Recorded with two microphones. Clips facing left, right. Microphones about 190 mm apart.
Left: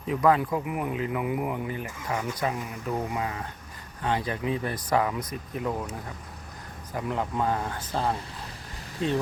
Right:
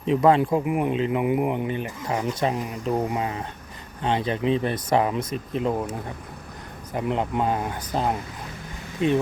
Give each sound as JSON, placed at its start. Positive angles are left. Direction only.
{"t": 0.0, "sound": "speech", "side_deg": -25}
{"t": 6.9, "sound": "speech", "side_deg": -20}